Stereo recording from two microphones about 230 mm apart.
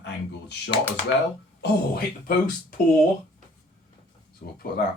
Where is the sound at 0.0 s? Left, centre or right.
Left.